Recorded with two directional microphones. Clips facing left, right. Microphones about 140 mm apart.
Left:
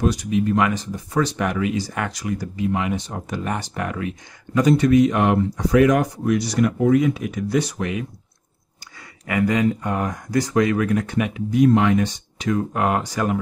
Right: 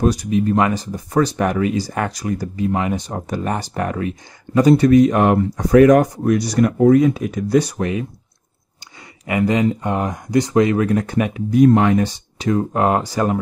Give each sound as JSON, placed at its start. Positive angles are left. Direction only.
{"t": 0.0, "sound": "speech", "side_deg": -40}
{"t": 9.2, "sound": "speech", "side_deg": -25}